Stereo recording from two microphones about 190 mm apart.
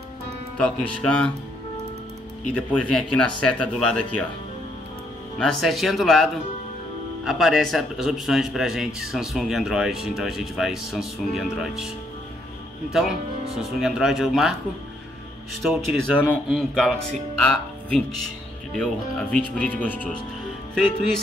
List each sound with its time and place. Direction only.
0.6 s speech: 5° left (ahead or behind)
2.5 s speech: 5° left (ahead or behind)
5.4 s speech: centre (ahead or behind)
12.9 s speech: centre (ahead or behind)
15.6 s speech: centre (ahead or behind)
18.8 s speech: 5° left (ahead or behind)